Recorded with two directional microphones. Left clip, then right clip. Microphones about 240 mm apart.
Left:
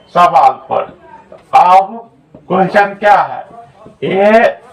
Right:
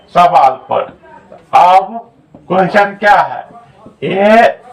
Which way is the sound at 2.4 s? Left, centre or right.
Right.